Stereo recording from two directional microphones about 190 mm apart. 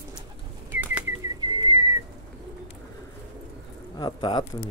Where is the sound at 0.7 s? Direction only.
10° right (ahead or behind).